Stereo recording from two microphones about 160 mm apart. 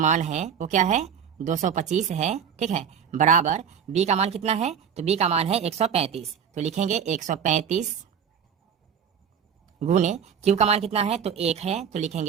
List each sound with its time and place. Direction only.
0.0 s speech: 50° right (ahead or behind)
9.8 s speech: 45° right (ahead or behind)